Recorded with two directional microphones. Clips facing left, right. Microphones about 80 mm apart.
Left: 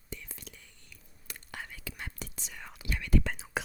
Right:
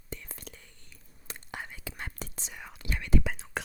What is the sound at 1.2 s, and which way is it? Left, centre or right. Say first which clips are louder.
Whispering: right 3 dB; right.